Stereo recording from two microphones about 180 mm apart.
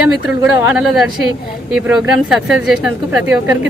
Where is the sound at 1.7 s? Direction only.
5° right (ahead or behind).